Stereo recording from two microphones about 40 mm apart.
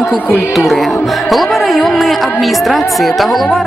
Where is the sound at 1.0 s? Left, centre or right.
Centre.